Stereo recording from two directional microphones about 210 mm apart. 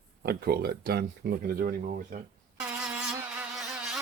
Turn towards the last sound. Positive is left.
turn(degrees=-5)  # may be behind; listen again after turning